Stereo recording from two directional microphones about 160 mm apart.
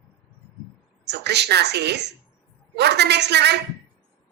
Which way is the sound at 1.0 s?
90° right.